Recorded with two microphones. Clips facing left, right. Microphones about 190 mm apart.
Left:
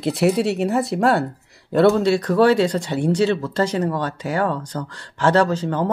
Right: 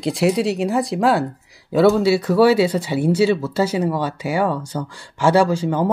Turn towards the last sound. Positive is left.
turn(degrees=-10)  # may be behind; listen again after turning